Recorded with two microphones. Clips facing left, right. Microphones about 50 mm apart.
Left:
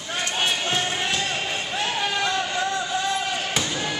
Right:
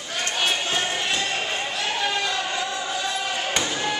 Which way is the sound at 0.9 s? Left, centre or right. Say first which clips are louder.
Even; centre.